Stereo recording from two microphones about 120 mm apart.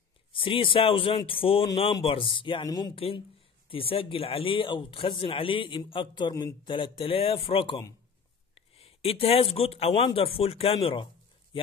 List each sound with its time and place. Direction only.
0.3 s speech: 45° left (ahead or behind)
3.0 s speech: 50° left (ahead or behind)